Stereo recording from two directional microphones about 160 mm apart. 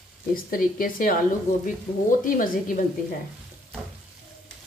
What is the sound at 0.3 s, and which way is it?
Speech, 65° left (ahead or behind).